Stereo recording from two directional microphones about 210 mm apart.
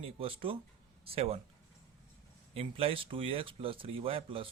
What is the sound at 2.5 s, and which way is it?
Speech, 25° right (ahead or behind).